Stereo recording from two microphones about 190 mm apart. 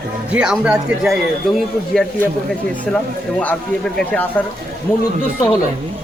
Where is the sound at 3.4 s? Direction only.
5° left (ahead or behind).